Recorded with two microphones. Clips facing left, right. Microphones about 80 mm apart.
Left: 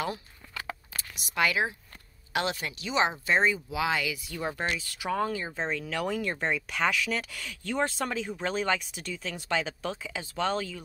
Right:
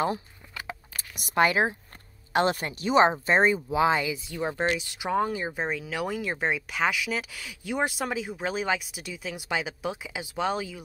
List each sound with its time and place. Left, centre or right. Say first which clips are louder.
1.3 s speech: right 5 dB; right; by 10.8 s centre